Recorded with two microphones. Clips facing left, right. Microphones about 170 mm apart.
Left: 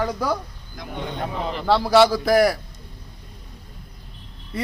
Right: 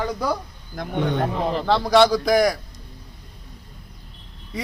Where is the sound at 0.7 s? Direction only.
60° right (ahead or behind).